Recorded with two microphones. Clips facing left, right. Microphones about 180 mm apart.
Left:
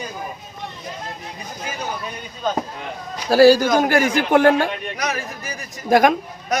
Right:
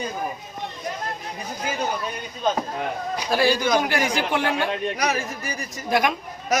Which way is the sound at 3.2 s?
40° left (ahead or behind).